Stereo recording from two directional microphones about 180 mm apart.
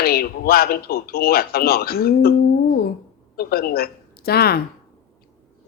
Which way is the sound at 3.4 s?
60° left (ahead or behind).